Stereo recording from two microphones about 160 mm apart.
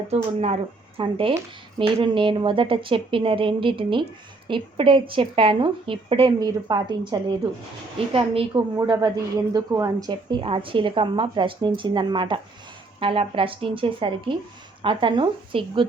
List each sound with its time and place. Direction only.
0.9 s a woman's voice: 35° right (ahead or behind)
8.7 s a woman's voice: 20° right (ahead or behind)